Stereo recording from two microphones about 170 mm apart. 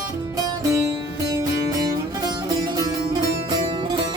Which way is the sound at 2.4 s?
25° right (ahead or behind).